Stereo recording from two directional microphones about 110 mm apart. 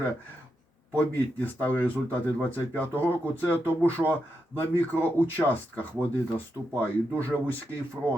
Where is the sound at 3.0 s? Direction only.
20° right (ahead or behind).